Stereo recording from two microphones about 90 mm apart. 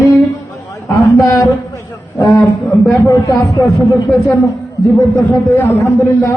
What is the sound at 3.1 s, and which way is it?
A man's voice, 35° left (ahead or behind).